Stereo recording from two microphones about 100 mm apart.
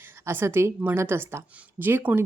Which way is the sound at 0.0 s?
25° right (ahead or behind).